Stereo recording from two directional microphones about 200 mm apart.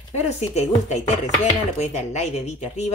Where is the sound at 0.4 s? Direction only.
35° left (ahead or behind).